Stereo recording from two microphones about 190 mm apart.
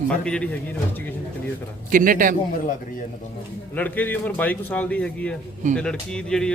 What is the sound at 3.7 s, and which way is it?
A man's voice, 10° left (ahead or behind).